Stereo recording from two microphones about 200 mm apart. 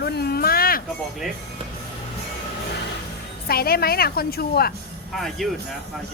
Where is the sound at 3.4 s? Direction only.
50° left (ahead or behind).